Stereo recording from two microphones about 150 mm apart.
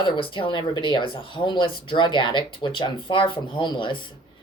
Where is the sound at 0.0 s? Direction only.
35° left (ahead or behind).